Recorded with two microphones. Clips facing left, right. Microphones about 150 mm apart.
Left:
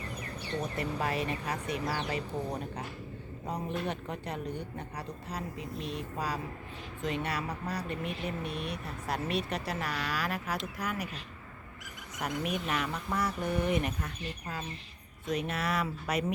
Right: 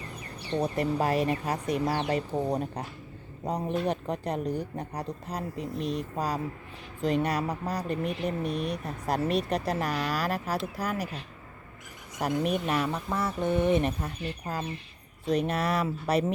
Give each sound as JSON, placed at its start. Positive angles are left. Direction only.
{"t": 0.6, "sound": "speech", "side_deg": -40}
{"t": 12.2, "sound": "speech", "side_deg": -35}